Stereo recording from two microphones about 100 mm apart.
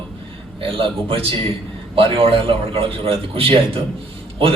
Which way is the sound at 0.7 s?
65° right (ahead or behind).